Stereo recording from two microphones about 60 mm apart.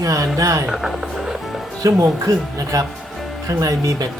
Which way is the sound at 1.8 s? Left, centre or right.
Right.